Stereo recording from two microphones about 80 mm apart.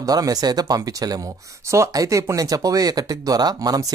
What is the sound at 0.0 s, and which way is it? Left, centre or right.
Speech, right.